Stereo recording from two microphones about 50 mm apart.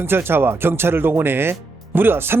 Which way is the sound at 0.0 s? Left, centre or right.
Right.